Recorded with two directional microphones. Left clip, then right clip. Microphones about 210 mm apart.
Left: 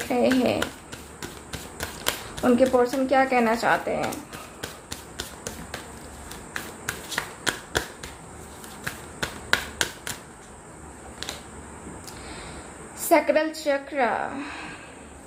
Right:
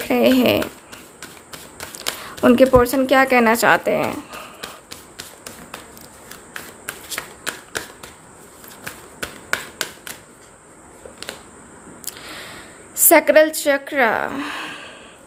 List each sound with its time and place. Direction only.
0.1 s speech: 45° right (ahead or behind)
2.4 s speech: 50° right (ahead or behind)
4.6 s a sound: 20° right (ahead or behind)
7.2 s a sound: 15° right (ahead or behind)
9.2 s finger snapping: 20° right (ahead or behind)
13.1 s speech: 45° right (ahead or behind)